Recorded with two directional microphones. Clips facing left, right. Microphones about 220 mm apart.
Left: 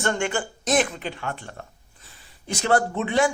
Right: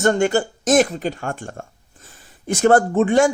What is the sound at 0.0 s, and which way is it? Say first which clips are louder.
Speech: right 8 dB; 40° right (ahead or behind).